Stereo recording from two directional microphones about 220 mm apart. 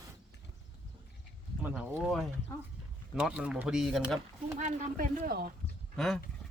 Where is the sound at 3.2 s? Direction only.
5° right (ahead or behind).